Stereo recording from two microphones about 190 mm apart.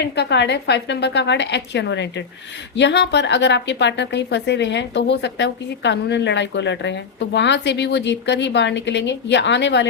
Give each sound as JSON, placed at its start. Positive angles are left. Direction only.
{"t": 0.0, "sound": "a woman's voice", "side_deg": 65}